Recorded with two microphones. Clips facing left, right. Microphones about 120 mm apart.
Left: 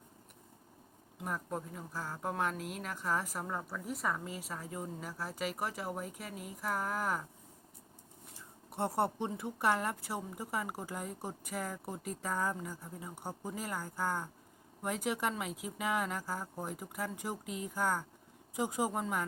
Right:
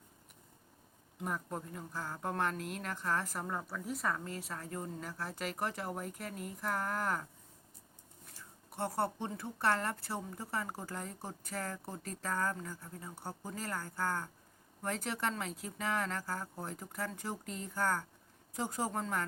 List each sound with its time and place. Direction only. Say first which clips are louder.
1.2 s speech: left 1 dB; centre (ahead or behind)
8.3 s speech: left 2 dB; 20° left (ahead or behind)